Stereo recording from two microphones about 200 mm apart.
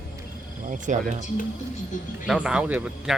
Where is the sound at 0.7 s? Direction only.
40° right (ahead or behind).